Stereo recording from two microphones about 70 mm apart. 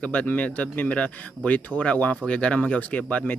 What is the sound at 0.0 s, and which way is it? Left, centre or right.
Speech, left.